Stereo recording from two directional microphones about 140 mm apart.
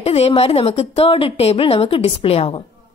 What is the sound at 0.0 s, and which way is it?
A woman's voice, 45° left (ahead or behind).